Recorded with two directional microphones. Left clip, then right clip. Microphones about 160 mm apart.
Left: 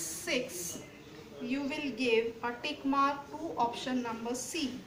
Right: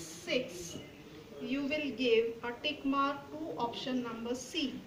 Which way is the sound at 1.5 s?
30° left (ahead or behind).